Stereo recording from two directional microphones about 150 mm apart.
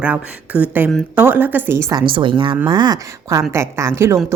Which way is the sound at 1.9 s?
30° right (ahead or behind).